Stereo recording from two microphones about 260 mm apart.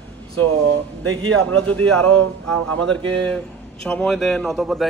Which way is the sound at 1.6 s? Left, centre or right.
Centre.